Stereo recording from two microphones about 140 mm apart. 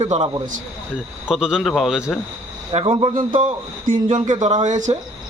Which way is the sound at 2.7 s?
45° right (ahead or behind).